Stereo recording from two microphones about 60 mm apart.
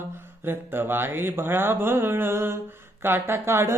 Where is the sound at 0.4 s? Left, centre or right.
Right.